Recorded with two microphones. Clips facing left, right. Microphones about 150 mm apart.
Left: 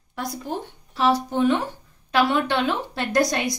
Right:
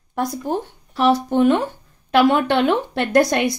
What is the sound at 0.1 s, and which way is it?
Speech, 50° right (ahead or behind).